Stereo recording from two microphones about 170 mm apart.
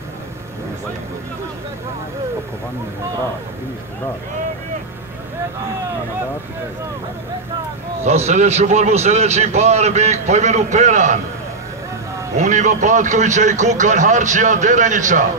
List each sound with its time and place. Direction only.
8.0 s a man's voice: 40° right (ahead or behind)
12.4 s a man's voice: 45° right (ahead or behind)